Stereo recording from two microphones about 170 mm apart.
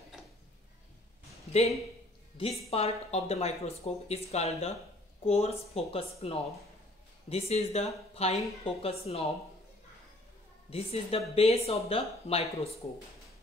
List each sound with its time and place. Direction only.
2.3 s speech: 35° left (ahead or behind)
10.7 s speech: 35° left (ahead or behind)